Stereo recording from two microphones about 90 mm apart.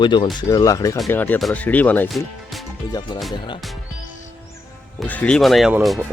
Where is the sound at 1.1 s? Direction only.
20° left (ahead or behind).